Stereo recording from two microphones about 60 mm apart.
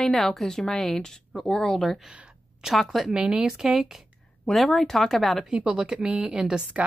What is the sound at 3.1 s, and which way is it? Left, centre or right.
Speech, centre.